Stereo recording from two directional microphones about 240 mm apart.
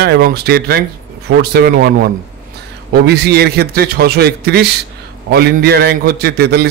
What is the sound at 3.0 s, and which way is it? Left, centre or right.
A man's voice, right.